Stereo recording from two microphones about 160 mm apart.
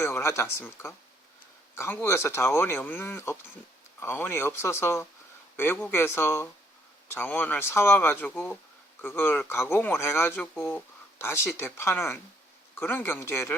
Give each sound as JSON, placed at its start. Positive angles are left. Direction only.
{"t": 0.0, "sound": "speech", "side_deg": 15}